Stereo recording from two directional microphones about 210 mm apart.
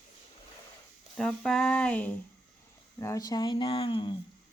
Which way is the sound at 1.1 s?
Centre (ahead or behind).